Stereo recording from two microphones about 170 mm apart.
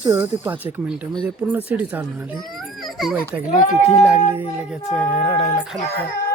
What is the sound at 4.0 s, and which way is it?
Speech, 5° right (ahead or behind).